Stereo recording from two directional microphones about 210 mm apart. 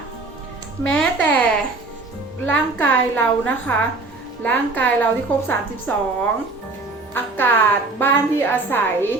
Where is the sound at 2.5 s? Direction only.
10° left (ahead or behind).